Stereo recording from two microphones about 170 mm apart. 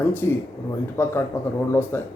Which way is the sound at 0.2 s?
15° left (ahead or behind).